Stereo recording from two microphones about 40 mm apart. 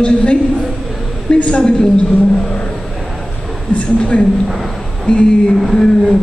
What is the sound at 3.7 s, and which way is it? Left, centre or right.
Speech, left.